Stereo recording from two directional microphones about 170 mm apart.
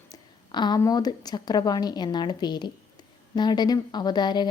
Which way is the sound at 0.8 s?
20° left (ahead or behind).